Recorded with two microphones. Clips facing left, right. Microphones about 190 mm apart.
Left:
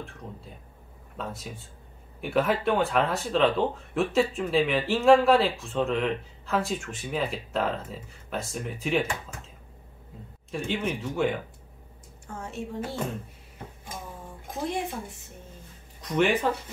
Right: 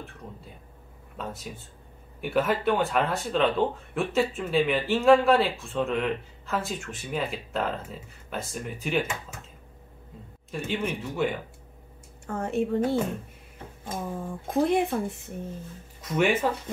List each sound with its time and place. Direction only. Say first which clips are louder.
1.1 s speech: even; centre (ahead or behind)
10.5 s speech: even; centre (ahead or behind)
12.3 s speech: right 9 dB; 60° right (ahead or behind)
13.8 s speech: right 9 dB; 55° right (ahead or behind)
16.0 s speech: even; 5° right (ahead or behind)